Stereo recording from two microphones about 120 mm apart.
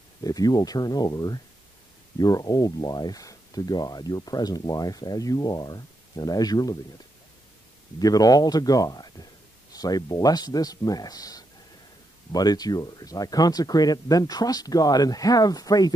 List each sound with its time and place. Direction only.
0.2 s speech: 30° left (ahead or behind)
8.0 s speech: 30° left (ahead or behind)